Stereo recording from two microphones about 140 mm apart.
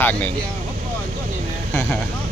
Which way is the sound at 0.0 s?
15° left (ahead or behind).